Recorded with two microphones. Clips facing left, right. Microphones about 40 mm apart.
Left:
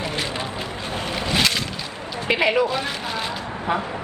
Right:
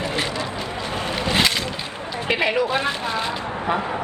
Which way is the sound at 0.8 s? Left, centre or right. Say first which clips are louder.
Right 3 dB; right.